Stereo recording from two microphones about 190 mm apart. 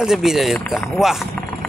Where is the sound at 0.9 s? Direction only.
Centre (ahead or behind).